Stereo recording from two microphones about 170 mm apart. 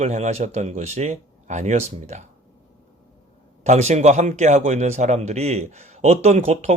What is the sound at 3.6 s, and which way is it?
Speech, 40° right (ahead or behind).